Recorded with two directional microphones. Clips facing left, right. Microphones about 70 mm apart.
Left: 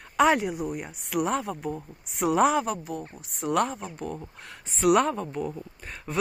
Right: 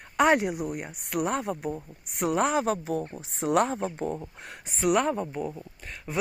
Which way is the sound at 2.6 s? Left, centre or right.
Right.